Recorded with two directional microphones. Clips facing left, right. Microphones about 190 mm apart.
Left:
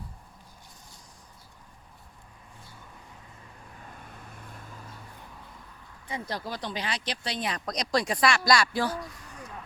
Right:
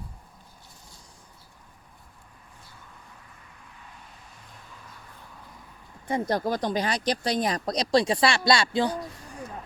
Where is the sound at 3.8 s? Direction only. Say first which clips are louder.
Left 4 dB; 50° left (ahead or behind).